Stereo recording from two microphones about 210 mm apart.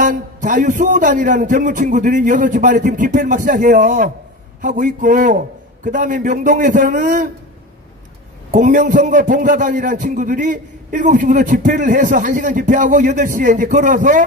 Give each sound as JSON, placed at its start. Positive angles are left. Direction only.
{"t": 0.0, "sound": "a man's voice", "side_deg": -40}
{"t": 8.5, "sound": "a man's voice", "side_deg": -40}